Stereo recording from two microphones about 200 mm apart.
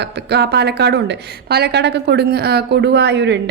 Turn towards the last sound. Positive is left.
turn(degrees=-60)  # may be behind; listen again after turning